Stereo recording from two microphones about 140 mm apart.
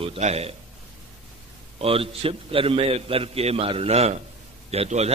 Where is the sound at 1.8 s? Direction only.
40° right (ahead or behind).